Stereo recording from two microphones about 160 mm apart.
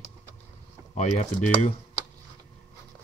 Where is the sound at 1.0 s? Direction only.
45° left (ahead or behind).